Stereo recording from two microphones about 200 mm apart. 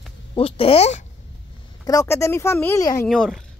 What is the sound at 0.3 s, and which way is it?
Speech, 30° left (ahead or behind).